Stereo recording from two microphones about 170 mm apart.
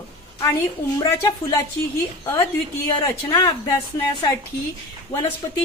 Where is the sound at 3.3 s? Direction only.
20° left (ahead or behind).